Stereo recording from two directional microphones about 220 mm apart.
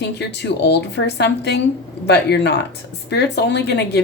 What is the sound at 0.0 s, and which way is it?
Speech, 50° left (ahead or behind).